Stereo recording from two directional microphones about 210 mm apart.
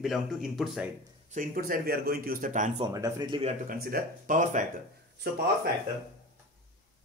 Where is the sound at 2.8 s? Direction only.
15° right (ahead or behind).